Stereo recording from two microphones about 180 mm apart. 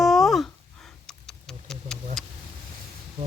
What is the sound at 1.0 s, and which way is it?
Tick-tock, 5° left (ahead or behind).